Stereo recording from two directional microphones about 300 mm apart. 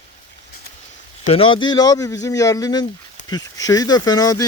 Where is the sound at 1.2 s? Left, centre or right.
Centre.